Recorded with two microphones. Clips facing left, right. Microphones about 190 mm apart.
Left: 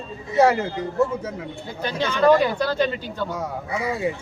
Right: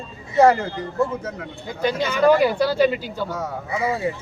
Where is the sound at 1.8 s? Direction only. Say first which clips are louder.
Right 2 dB; 10° right (ahead or behind).